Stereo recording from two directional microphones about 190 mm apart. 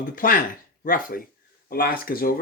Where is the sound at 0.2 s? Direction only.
45° left (ahead or behind).